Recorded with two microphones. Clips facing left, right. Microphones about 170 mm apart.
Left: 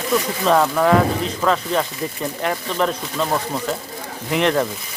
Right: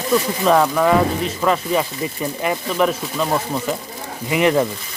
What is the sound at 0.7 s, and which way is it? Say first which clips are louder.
Speech: even; centre (ahead or behind).